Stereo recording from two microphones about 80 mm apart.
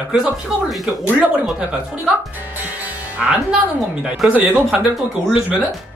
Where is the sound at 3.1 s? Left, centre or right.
Centre.